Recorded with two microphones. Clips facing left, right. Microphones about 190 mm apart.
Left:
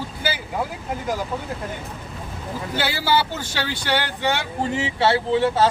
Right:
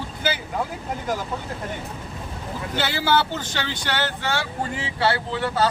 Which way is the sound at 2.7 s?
10° left (ahead or behind).